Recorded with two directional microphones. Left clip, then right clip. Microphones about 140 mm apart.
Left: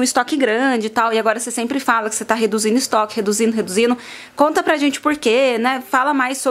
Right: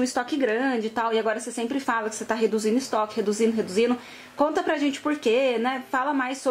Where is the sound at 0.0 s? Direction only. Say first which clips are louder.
Left 8 dB; 35° left (ahead or behind).